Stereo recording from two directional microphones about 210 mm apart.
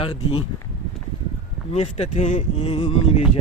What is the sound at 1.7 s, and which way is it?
Speech, 30° left (ahead or behind).